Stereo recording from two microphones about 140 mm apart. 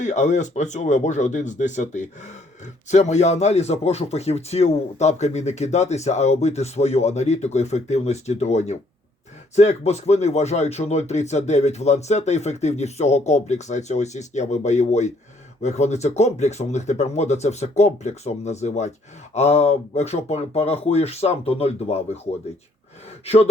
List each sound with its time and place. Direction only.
0.0 s speech: 60° left (ahead or behind)